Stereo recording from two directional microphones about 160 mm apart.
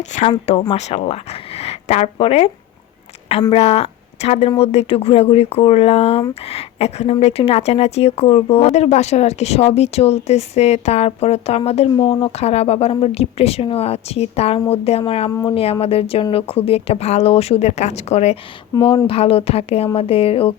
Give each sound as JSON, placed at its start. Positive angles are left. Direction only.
{"t": 0.3, "sound": "speech", "side_deg": 35}
{"t": 3.5, "sound": "speech", "side_deg": 40}
{"t": 15.3, "sound": "speech", "side_deg": 20}
{"t": 15.5, "sound": "speech", "side_deg": 35}